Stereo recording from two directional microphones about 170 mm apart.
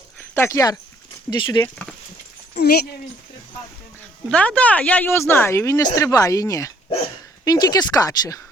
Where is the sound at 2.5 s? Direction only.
70° left (ahead or behind).